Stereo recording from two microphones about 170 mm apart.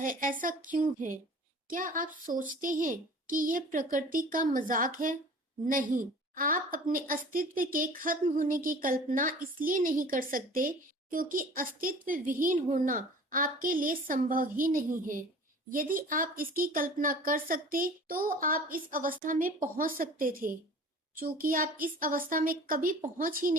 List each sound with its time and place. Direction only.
0.0 s a child's voice: 55° right (ahead or behind)